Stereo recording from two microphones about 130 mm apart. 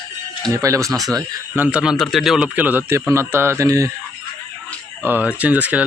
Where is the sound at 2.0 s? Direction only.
Centre (ahead or behind); by 3.9 s 25° right (ahead or behind).